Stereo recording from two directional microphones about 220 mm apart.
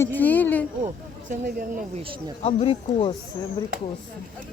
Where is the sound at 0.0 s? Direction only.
10° left (ahead or behind).